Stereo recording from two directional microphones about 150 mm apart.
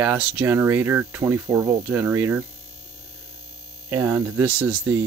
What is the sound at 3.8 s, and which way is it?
Speech, 15° right (ahead or behind).